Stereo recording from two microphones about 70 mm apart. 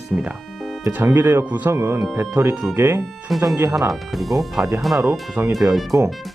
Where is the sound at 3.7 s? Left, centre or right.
Right.